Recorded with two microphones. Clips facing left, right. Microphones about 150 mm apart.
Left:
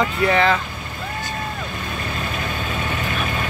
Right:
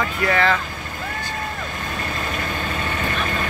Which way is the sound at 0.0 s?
20° left (ahead or behind).